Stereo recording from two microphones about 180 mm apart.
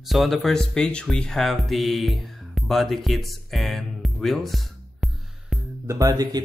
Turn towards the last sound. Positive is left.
turn(degrees=-20)  # may be behind; listen again after turning